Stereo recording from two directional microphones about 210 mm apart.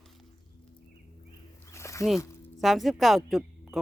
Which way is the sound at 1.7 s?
15° left (ahead or behind).